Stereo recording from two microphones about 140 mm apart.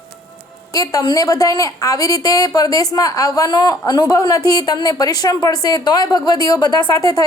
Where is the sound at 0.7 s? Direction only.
25° left (ahead or behind).